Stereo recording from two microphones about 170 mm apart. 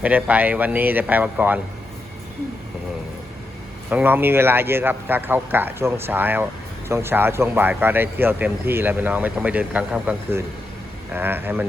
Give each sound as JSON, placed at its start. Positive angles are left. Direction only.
{"t": 0.0, "sound": "a man's voice", "side_deg": -10}
{"t": 3.8, "sound": "a man's voice", "side_deg": -10}